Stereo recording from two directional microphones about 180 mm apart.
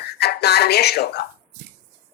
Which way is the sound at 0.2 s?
65° left (ahead or behind).